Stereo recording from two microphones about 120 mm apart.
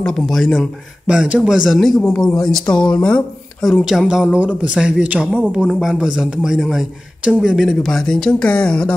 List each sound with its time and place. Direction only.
0.0 s speech: 5° left (ahead or behind)
2.0 s speech: 15° left (ahead or behind)
3.8 s speech: 5° right (ahead or behind)